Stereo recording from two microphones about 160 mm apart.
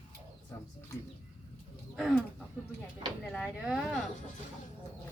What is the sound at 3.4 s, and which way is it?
Speech, 5° right (ahead or behind).